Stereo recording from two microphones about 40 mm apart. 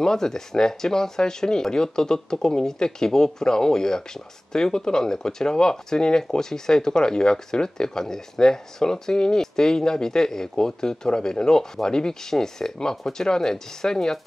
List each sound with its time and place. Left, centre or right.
0.0 s speech: centre